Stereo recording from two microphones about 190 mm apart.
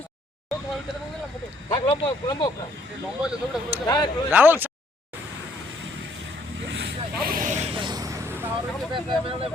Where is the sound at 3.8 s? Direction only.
20° left (ahead or behind).